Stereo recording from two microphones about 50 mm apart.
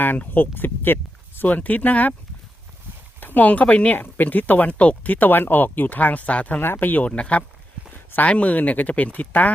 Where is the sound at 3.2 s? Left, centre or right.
Left.